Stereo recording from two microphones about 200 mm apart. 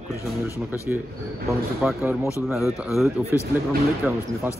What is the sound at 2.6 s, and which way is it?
Speech, centre (ahead or behind).